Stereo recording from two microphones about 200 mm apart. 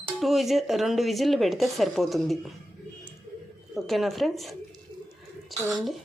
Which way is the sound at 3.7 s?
Centre (ahead or behind).